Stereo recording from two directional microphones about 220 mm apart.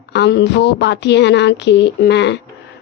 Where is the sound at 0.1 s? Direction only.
50° left (ahead or behind).